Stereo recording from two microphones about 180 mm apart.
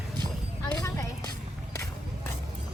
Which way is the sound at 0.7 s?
15° left (ahead or behind).